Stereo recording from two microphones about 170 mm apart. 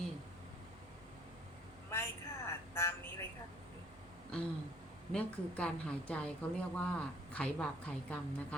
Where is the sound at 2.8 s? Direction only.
15° left (ahead or behind).